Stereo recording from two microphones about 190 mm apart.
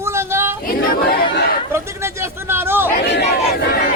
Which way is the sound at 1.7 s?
15° right (ahead or behind).